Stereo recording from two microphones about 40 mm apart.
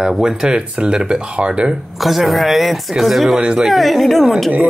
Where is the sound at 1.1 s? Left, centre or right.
Right.